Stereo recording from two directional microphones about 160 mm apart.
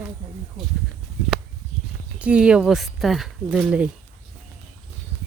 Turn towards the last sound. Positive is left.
turn(degrees=-5)  # may be behind; listen again after turning